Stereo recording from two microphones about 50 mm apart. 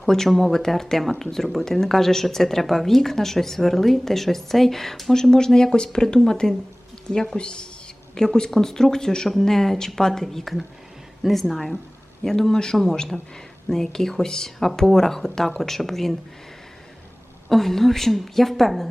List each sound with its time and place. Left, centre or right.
0.0 s a woman's voice: centre
17.5 s a woman's voice: centre